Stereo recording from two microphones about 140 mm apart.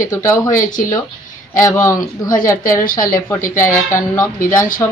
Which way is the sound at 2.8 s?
85° left.